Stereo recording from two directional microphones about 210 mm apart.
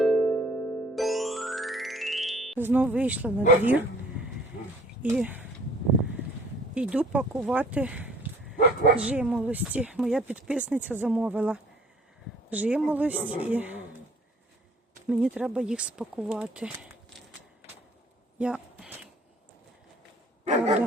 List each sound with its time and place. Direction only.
0.0 s music: centre (ahead or behind)
2.6 s speech: 10° right (ahead or behind)
5.0 s speech: 5° right (ahead or behind)
6.7 s speech: 5° right (ahead or behind)
15.0 s speech: 5° right (ahead or behind)
18.3 s a sound: 5° right (ahead or behind)
20.4 s dog: 30° right (ahead or behind)